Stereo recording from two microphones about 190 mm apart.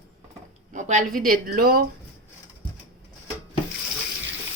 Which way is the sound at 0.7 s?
40° right (ahead or behind).